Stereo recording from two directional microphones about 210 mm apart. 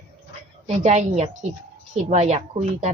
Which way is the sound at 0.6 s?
35° right (ahead or behind).